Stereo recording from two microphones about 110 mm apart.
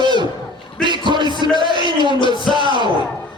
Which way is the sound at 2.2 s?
45° left (ahead or behind).